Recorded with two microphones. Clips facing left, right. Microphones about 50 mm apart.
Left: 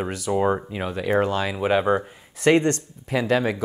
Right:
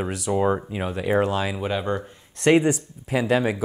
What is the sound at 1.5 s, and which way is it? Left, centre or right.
Speech, centre.